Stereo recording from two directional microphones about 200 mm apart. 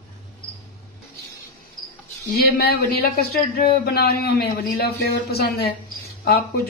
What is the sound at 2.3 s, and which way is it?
Speech, 50° left (ahead or behind).